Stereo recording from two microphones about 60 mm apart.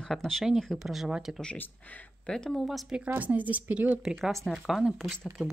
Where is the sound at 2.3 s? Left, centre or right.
Centre.